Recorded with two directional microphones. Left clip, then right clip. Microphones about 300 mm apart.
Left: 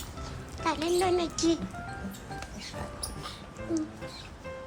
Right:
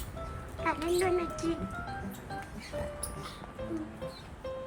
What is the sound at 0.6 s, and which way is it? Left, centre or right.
Speech, centre.